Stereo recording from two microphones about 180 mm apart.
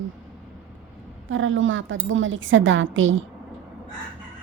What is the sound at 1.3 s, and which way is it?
A woman's voice, 90° right.